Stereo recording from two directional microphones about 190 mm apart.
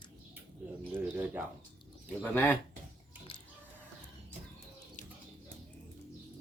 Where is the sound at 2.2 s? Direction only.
10° left (ahead or behind).